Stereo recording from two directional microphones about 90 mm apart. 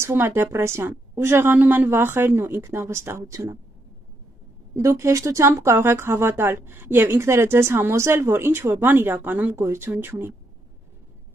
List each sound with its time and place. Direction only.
0.0 s speech: 25° right (ahead or behind)
4.7 s speech: 30° right (ahead or behind)